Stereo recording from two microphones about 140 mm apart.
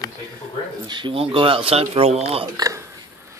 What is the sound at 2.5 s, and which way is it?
Speech, 25° right (ahead or behind).